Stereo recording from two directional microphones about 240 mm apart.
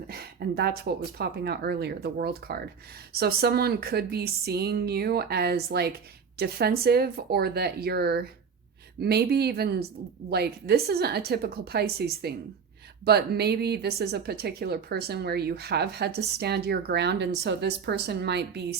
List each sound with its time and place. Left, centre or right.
0.1 s a woman's voice: right